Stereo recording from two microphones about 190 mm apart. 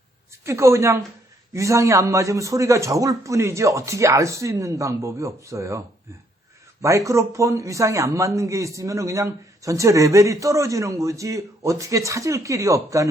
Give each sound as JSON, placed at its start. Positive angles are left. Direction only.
{"t": 0.4, "sound": "a man's voice", "side_deg": -15}
{"t": 6.8, "sound": "a man's voice", "side_deg": -15}